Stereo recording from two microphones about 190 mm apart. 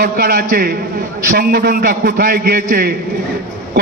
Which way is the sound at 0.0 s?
50° right (ahead or behind).